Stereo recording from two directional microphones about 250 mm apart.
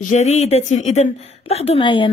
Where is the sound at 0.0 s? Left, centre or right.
Left.